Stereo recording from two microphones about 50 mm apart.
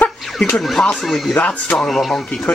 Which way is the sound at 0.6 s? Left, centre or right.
Centre.